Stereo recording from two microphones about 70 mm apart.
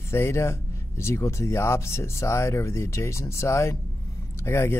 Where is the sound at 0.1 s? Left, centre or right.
Left.